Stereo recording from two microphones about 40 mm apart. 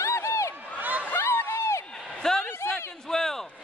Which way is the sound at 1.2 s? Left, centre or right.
Left.